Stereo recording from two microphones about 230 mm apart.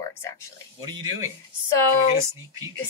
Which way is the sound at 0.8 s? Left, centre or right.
Centre.